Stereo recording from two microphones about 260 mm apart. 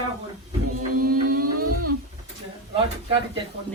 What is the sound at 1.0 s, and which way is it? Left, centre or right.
Music, right.